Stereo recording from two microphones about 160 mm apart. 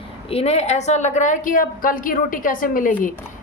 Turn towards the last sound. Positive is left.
turn(degrees=55)  # may be behind; listen again after turning